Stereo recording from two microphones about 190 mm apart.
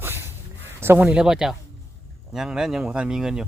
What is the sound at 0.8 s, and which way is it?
Speech, 10° right (ahead or behind).